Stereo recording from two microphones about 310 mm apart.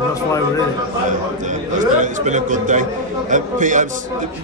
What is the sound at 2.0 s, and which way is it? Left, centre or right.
A man's voice, right.